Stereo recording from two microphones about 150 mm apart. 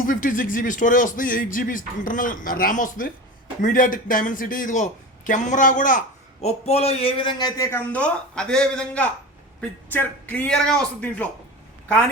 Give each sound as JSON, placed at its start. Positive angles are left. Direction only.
{"t": 0.0, "sound": "speech", "side_deg": 65}
{"t": 6.4, "sound": "speech", "side_deg": 40}
{"t": 7.7, "sound": "a man's voice", "side_deg": 10}